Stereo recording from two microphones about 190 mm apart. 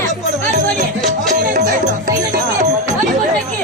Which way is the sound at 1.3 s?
40° right (ahead or behind).